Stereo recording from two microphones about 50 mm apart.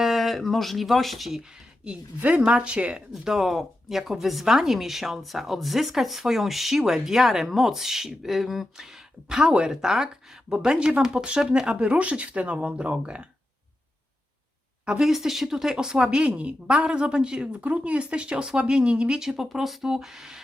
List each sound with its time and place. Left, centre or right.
0.0 s speech: centre
1.8 s speech: right
3.1 s speech: centre; by 13.2 s right
15.0 s speech: centre; by 19.2 s right
19.2 s speech: centre